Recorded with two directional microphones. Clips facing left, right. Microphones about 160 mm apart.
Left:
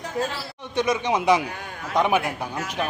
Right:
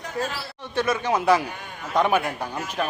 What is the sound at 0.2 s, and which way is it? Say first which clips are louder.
Speech: left 1 dB; 15° left (ahead or behind).